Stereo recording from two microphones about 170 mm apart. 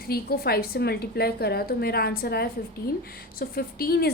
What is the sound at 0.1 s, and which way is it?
A woman's voice, 65° left (ahead or behind).